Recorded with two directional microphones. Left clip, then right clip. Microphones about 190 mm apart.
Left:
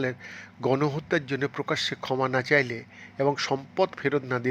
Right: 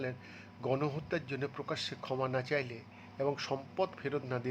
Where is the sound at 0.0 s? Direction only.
20° left (ahead or behind).